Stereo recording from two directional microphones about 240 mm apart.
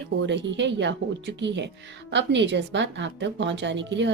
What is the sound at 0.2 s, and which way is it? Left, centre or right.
Speech, right.